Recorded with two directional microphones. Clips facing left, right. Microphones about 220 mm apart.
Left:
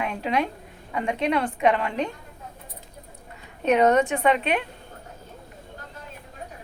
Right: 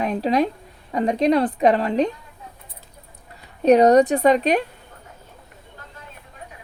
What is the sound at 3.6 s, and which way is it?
A woman's voice, 35° right (ahead or behind).